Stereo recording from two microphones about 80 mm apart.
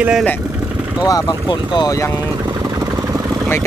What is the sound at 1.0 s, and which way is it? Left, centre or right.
Speech, left.